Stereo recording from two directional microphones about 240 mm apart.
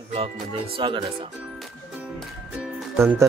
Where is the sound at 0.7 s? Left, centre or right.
Right.